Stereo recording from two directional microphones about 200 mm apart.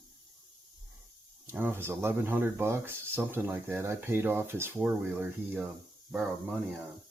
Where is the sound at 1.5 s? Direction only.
10° right (ahead or behind).